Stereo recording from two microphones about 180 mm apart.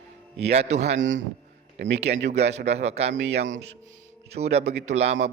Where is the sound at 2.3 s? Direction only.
35° right (ahead or behind).